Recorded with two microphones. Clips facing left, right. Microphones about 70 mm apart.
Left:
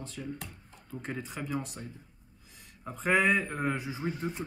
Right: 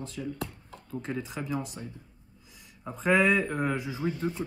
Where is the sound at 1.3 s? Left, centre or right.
Centre.